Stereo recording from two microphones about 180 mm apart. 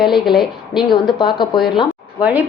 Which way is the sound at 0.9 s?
25° left (ahead or behind).